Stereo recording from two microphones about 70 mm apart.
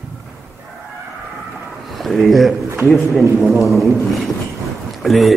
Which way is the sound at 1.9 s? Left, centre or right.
Centre.